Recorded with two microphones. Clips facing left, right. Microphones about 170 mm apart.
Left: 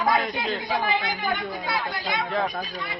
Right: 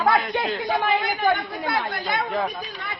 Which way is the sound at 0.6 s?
50° right (ahead or behind).